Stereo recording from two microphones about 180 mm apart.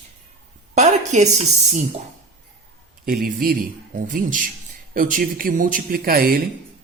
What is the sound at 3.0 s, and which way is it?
A man's voice, 50° right (ahead or behind).